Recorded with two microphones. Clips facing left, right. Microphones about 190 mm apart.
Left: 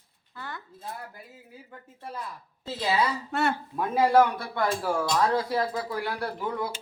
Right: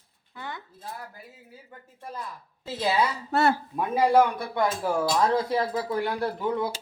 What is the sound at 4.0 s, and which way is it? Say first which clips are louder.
A man's voice: even; 15° right (ahead or behind).